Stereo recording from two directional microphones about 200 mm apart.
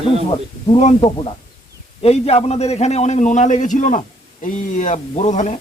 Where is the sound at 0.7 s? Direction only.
30° left (ahead or behind).